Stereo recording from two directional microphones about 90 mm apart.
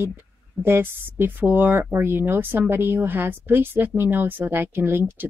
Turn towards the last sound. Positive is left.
turn(degrees=-25)  # may be behind; listen again after turning